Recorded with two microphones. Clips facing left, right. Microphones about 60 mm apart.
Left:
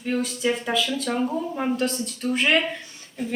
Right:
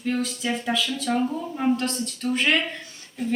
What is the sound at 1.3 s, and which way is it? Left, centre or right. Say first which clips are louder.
Speech: left 1 dB; centre.